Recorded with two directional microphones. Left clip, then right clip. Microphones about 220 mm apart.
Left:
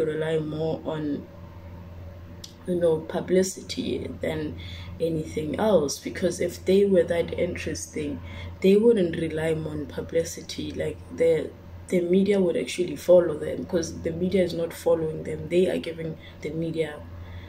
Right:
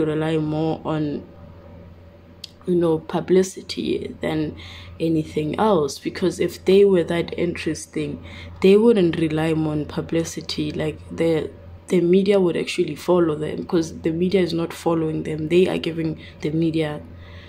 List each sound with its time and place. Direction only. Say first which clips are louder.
0.0 s speech: right 4 dB; 50° right (ahead or behind)
2.8 s speech: right 1 dB; 50° right (ahead or behind)